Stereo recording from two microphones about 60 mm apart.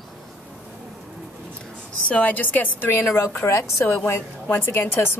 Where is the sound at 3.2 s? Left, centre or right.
Left.